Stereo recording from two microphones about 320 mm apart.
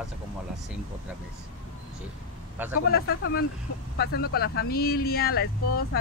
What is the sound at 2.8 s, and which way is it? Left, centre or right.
Speech, left.